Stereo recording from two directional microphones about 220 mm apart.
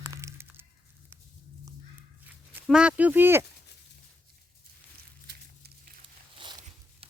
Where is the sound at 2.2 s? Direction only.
5° right (ahead or behind).